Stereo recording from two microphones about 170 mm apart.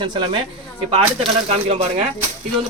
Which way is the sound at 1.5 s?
40° right (ahead or behind).